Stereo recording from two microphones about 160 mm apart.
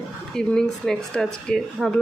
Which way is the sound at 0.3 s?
5° left (ahead or behind).